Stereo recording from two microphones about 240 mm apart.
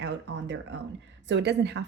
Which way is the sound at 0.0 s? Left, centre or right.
Right.